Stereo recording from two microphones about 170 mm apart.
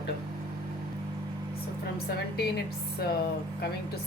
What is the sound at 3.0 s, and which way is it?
Speech, 65° left (ahead or behind).